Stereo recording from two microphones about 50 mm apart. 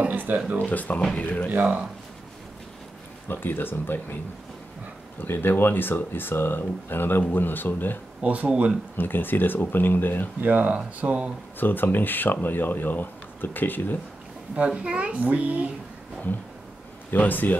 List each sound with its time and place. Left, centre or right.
0.0 s a sound: right
0.6 s speech: left
3.3 s speech: left
5.2 s speech: left
8.2 s speech: right
8.9 s speech: left
10.4 s speech: right
11.6 s speech: left
14.7 s speech: right
17.1 s speech: left